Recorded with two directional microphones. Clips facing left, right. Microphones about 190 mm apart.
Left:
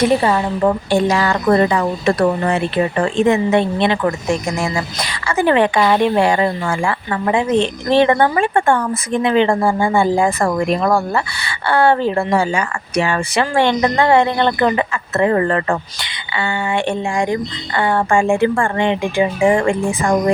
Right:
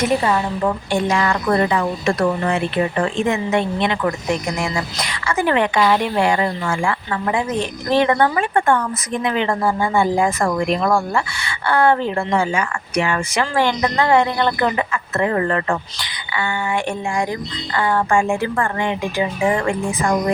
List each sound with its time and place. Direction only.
0.0 s a woman's voice: 35° left (ahead or behind)
5.3 s speech: 30° left (ahead or behind)
10.4 s a woman's voice: 40° left (ahead or behind)